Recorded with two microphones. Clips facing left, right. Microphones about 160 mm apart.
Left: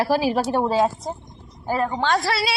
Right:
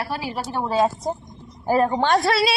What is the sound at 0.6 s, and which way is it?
Speech, 20° left (ahead or behind).